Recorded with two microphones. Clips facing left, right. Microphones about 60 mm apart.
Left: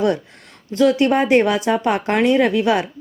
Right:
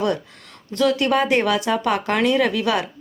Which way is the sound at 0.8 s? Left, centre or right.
Left.